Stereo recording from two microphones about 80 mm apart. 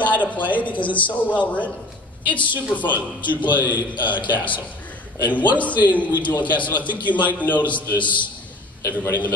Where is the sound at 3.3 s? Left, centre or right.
Left.